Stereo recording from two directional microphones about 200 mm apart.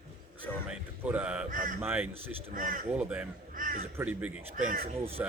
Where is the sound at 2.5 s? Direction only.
40° right (ahead or behind).